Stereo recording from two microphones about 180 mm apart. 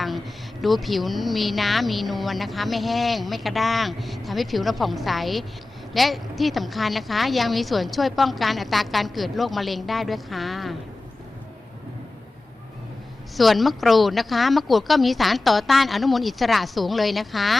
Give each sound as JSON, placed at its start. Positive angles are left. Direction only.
{"t": 0.6, "sound": "speech", "side_deg": 0}
{"t": 13.3, "sound": "speech", "side_deg": 0}